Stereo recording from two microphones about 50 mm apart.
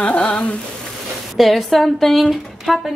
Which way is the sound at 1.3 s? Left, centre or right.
Centre.